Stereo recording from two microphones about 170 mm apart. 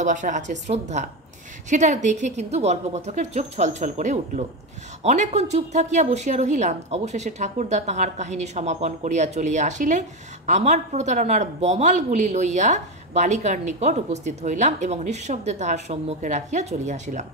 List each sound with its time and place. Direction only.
0.0 s speech: 45° right (ahead or behind)